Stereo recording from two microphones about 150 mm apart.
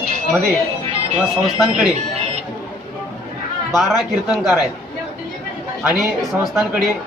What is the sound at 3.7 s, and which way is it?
Speech, centre (ahead or behind).